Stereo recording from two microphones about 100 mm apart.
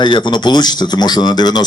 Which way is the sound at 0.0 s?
50° left (ahead or behind).